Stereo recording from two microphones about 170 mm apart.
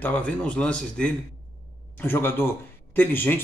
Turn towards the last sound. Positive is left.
turn(degrees=10)  # may be behind; listen again after turning